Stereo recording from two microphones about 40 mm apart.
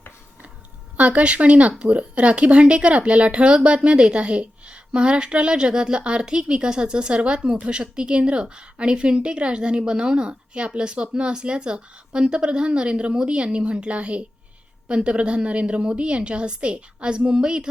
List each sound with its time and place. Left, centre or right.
0.9 s speech: right